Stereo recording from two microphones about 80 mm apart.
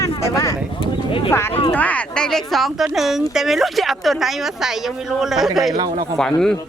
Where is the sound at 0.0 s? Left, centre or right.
Left.